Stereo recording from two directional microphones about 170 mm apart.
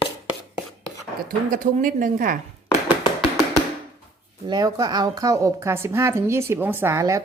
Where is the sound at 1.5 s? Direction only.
50° right (ahead or behind).